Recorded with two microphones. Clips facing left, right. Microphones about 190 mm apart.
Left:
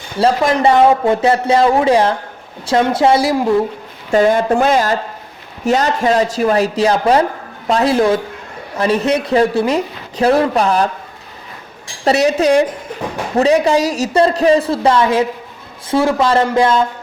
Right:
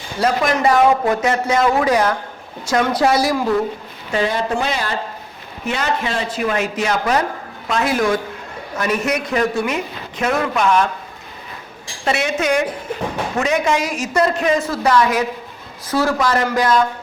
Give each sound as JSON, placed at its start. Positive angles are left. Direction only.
{"t": 0.2, "sound": "speech", "side_deg": 30}
{"t": 4.1, "sound": "speech", "side_deg": 50}
{"t": 12.0, "sound": "speech", "side_deg": 35}